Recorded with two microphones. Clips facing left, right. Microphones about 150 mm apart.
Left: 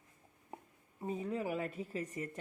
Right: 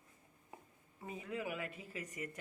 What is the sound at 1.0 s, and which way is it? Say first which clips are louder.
Speech: left 5 dB; 35° left (ahead or behind).